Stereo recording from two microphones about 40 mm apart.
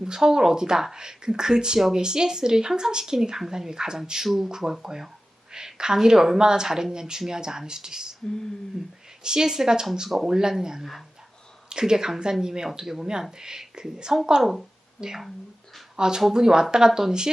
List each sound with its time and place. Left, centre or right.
0.0 s speech: centre
9.2 s speech: centre